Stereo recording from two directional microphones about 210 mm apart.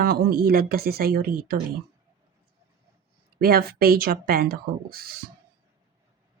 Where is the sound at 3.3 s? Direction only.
45° right (ahead or behind).